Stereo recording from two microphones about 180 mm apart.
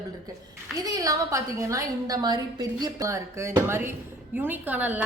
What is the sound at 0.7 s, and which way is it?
A woman's voice, 20° right (ahead or behind).